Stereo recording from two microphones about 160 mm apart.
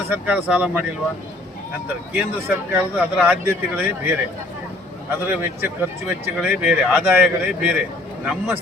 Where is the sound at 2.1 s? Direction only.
10° right (ahead or behind).